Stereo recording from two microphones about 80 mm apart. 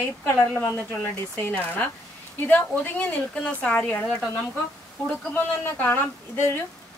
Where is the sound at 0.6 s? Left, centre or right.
Left.